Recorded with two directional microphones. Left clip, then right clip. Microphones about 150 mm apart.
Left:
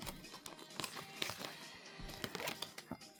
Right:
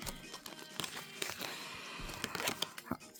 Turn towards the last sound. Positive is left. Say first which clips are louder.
# right 7 dB
turn(degrees=-50)  # may be behind; listen again after turning